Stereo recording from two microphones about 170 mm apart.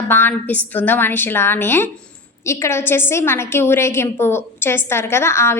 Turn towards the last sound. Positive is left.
turn(degrees=15)  # may be behind; listen again after turning